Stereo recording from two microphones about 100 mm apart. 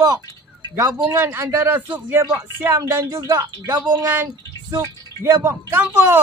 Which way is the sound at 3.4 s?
45° right (ahead or behind).